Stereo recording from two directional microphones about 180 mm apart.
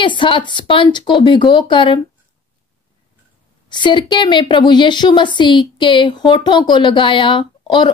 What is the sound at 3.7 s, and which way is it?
Speech, 25° left (ahead or behind).